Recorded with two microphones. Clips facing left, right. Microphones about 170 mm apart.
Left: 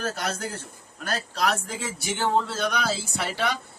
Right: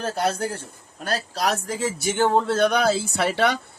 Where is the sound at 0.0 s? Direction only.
30° right (ahead or behind).